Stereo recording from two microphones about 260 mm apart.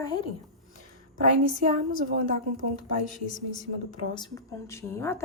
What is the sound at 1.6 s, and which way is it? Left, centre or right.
Speech, right.